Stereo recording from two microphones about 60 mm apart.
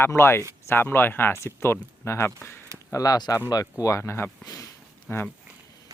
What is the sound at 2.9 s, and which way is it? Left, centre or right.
Speech, left.